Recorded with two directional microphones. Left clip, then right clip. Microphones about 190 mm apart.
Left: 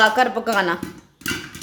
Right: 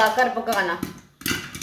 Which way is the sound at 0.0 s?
60° left (ahead or behind).